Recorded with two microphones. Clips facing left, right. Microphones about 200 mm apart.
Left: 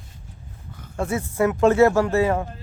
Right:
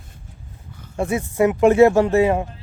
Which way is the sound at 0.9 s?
15° right (ahead or behind).